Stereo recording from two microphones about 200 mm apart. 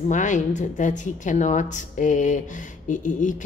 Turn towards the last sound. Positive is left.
turn(degrees=40)  # may be behind; listen again after turning